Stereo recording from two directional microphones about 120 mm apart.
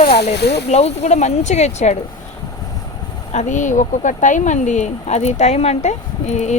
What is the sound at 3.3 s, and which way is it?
Speech, 80° left.